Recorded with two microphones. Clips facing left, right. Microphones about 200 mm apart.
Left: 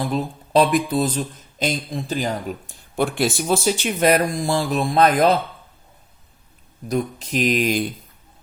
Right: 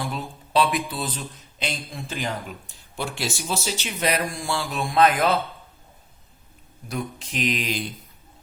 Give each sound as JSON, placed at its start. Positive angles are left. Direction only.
{"t": 0.0, "sound": "speech", "side_deg": 40}
{"t": 6.8, "sound": "speech", "side_deg": 40}